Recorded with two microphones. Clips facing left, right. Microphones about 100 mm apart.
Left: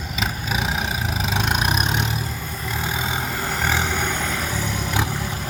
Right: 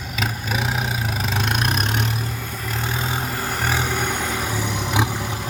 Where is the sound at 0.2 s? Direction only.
Centre (ahead or behind).